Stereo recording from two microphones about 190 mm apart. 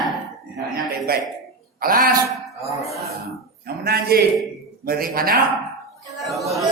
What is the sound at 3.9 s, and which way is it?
A man's voice, 55° right (ahead or behind).